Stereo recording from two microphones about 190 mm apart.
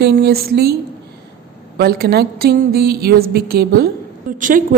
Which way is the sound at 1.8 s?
55° right (ahead or behind).